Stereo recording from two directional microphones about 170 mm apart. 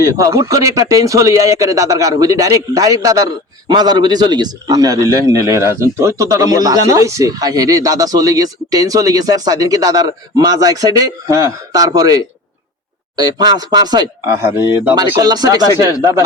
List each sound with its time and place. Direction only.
0.0 s a man's voice: 20° right (ahead or behind)